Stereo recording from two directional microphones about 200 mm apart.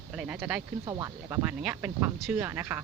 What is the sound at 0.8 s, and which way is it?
Speech, 20° right (ahead or behind).